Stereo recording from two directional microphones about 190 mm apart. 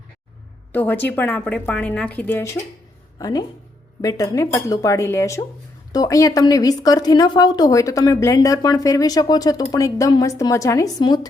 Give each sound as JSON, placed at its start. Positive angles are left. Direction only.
{"t": 0.7, "sound": "a woman's voice", "side_deg": 10}